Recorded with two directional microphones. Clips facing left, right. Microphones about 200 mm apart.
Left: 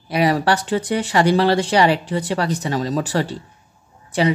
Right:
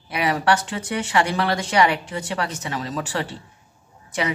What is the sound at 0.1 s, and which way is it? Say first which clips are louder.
Speech: left 4 dB; 35° left (ahead or behind).